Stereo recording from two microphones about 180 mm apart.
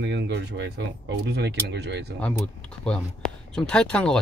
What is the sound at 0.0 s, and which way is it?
Speech, 75° right (ahead or behind).